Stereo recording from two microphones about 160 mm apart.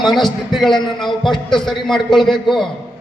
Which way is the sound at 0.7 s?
30° left (ahead or behind).